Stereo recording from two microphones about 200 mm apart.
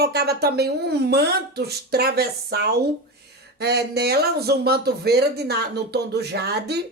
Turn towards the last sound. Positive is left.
turn(degrees=-55)  # may be behind; listen again after turning